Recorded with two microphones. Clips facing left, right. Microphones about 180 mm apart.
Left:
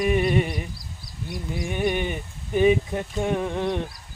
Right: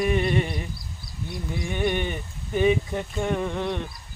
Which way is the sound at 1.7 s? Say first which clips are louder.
Left 1 dB; 10° left (ahead or behind).